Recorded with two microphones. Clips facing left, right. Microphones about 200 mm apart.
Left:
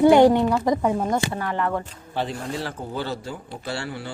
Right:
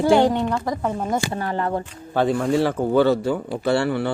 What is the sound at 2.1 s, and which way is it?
A man's voice, 50° right (ahead or behind).